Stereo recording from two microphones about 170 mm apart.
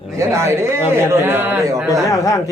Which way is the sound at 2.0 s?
20° left (ahead or behind).